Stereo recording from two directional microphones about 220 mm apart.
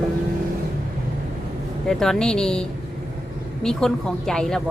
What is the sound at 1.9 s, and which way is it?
Speech, centre (ahead or behind).